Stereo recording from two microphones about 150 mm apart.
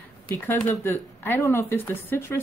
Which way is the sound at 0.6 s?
15° left (ahead or behind).